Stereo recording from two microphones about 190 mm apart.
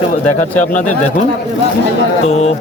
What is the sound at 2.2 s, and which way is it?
Speech, 35° left (ahead or behind).